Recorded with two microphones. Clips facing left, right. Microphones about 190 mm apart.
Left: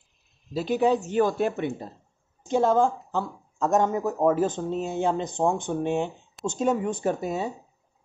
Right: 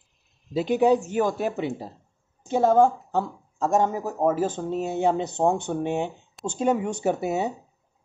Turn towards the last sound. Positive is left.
turn(degrees=-10)  # may be behind; listen again after turning